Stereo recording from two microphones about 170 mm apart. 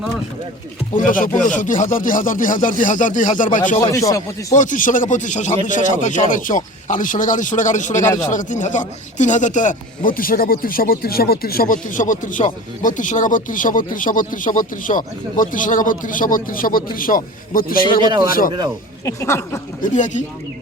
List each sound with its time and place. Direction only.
0.9 s speech: 50° left (ahead or behind)
3.8 s speech: 20° left (ahead or behind)
4.5 s a man's voice: 50° left (ahead or behind)
19.0 s speech: 15° left (ahead or behind)
19.8 s speech: 45° left (ahead or behind)